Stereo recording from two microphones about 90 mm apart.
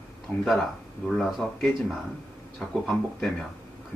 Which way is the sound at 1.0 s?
5° left (ahead or behind).